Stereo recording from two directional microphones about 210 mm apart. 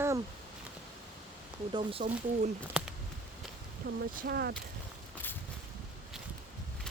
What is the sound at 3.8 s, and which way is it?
Speech, 50° right (ahead or behind).